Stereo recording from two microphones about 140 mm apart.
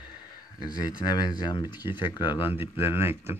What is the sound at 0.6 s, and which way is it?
Speech, 25° left (ahead or behind).